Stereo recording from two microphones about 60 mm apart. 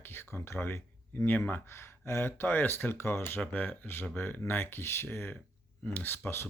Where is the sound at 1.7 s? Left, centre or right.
Left.